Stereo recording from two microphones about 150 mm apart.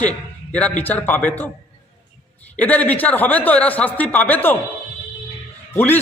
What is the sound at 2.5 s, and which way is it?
A man's voice, 10° left (ahead or behind).